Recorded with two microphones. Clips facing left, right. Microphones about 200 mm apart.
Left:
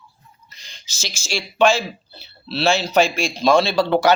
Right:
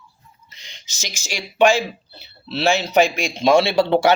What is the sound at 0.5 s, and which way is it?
A man's voice, 20° right (ahead or behind).